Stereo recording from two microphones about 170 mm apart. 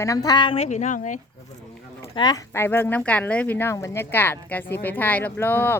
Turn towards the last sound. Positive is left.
turn(degrees=10)  # may be behind; listen again after turning